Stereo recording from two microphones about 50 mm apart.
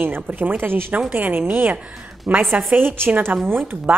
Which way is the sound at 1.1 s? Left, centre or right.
Right.